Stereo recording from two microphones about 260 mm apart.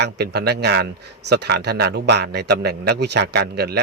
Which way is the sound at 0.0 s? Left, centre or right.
Right.